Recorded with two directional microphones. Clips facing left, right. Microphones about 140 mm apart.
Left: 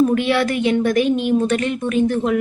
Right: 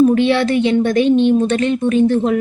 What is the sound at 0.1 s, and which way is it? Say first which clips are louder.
Speech: right 4 dB; 30° right (ahead or behind).